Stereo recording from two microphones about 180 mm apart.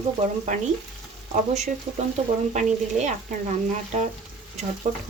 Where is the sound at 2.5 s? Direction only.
40° right (ahead or behind).